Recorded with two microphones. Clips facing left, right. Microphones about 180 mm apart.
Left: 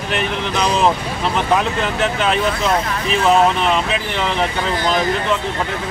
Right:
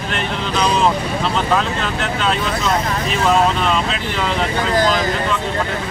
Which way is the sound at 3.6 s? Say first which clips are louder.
Left 1 dB; 20° left (ahead or behind).